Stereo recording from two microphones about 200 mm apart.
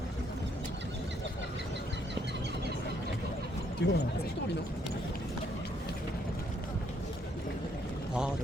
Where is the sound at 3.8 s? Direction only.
55° left (ahead or behind).